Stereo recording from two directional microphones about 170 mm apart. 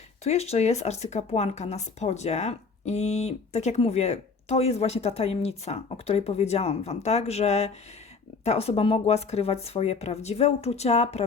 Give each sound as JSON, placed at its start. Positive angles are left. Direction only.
{"t": 0.3, "sound": "speech", "side_deg": 40}